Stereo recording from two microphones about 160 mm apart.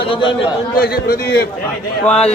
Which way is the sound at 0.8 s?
70° left (ahead or behind).